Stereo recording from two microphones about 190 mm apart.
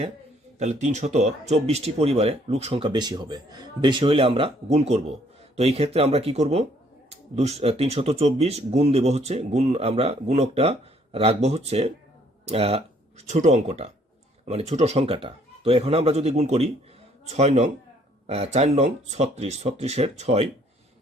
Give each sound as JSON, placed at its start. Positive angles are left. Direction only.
{"t": 0.6, "sound": "speech", "side_deg": -40}